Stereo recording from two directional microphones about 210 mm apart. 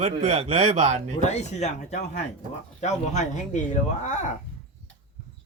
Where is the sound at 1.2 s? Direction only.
30° left (ahead or behind).